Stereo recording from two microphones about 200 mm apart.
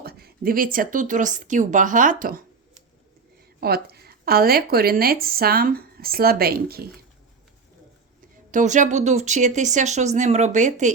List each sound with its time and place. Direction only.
0.0 s speech: 50° right (ahead or behind)
3.6 s a woman's voice: 50° right (ahead or behind)
8.4 s speech: 40° right (ahead or behind)